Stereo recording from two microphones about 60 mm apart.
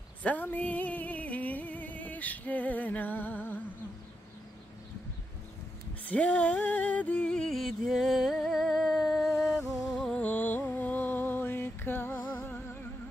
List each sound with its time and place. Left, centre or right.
0.2 s music: left
6.0 s music: left
7.5 s music: centre
10.1 s music: left